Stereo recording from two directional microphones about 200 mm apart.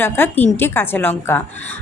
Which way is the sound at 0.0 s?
10° left (ahead or behind).